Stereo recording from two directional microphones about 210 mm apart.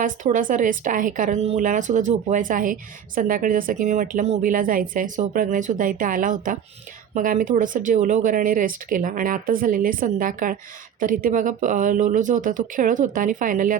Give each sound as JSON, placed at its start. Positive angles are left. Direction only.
{"t": 0.0, "sound": "speech", "side_deg": -40}